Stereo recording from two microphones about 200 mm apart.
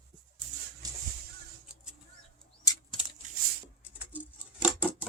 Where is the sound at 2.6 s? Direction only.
20° left (ahead or behind).